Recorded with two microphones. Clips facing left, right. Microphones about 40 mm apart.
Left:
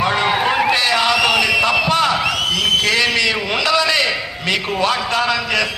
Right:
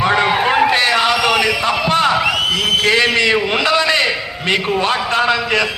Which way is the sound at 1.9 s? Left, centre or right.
Right.